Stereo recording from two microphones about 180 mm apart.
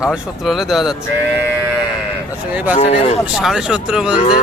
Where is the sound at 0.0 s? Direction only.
5° right (ahead or behind).